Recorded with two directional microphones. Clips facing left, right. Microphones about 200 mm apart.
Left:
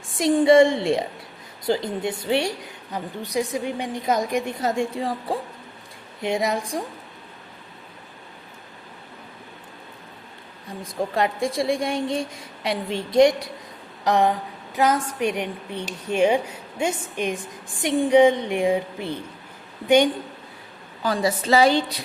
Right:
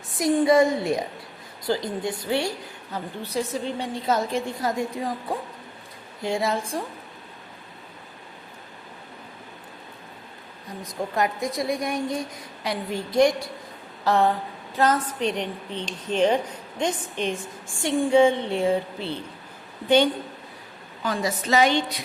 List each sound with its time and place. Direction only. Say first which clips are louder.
0.2 s a woman's voice: left 3 dB; 25° left (ahead or behind)
6.2 s a woman's voice: left 2 dB; 20° left (ahead or behind)
10.8 s a woman's voice: left 2 dB; 30° left (ahead or behind); by 19.2 s 15° left (ahead or behind)
21.0 s a woman's voice: left 4 dB; 35° left (ahead or behind)